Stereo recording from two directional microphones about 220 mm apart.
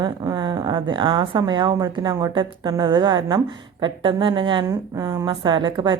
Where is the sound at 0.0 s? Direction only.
20° right (ahead or behind).